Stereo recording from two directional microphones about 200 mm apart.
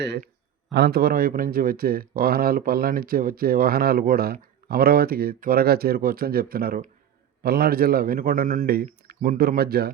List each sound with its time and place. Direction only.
0.7 s speech: 55° right (ahead or behind)